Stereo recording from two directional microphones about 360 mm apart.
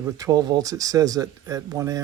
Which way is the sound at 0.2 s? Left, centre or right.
Centre.